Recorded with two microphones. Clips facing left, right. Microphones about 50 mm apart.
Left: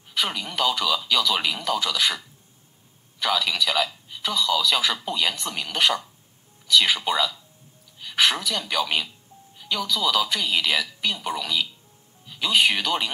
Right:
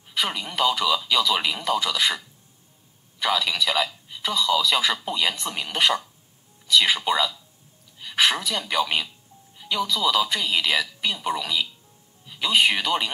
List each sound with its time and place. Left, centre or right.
0.1 s speech: centre
3.2 s speech: centre
8.0 s a sound: centre
8.4 s speech: right
8.6 s speech: centre
10.5 s speech: centre